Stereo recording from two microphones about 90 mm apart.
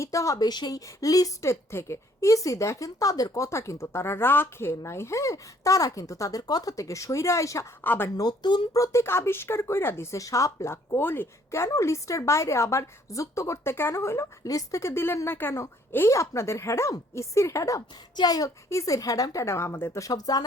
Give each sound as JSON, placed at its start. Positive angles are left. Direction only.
{"t": 0.0, "sound": "a woman's voice", "side_deg": 35}
{"t": 7.8, "sound": "a woman's voice", "side_deg": 25}
{"t": 8.1, "sound": "speech", "side_deg": 50}
{"t": 8.7, "sound": "a woman's voice", "side_deg": 35}
{"t": 10.9, "sound": "a woman's voice", "side_deg": 25}
{"t": 20.0, "sound": "speech", "side_deg": 40}